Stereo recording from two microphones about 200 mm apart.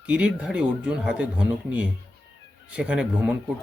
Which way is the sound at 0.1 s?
5° right (ahead or behind).